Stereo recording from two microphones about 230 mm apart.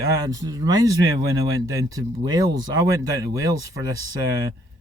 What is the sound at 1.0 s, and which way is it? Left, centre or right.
Speech, right.